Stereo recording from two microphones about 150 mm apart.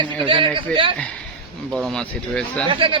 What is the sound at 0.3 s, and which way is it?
Speech, 35° right (ahead or behind).